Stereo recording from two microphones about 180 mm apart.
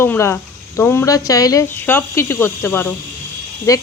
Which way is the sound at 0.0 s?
15° left (ahead or behind).